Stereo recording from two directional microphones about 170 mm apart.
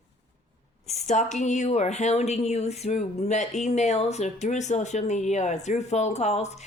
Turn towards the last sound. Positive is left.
turn(degrees=40)  # may be behind; listen again after turning